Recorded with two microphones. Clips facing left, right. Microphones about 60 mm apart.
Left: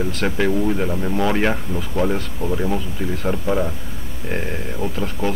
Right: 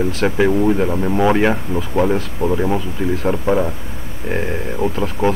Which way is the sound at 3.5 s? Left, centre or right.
Right.